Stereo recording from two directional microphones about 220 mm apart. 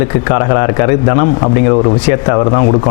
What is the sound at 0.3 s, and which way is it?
A man's voice, 20° left (ahead or behind).